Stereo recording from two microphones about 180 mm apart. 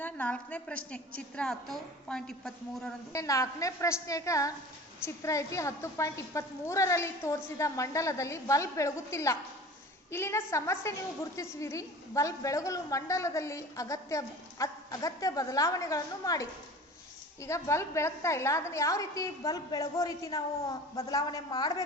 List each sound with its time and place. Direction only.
0.0 s a woman's voice: 10° left (ahead or behind)
3.1 s a woman's voice: 20° left (ahead or behind)